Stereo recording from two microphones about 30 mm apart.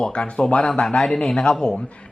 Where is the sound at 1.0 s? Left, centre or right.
Centre.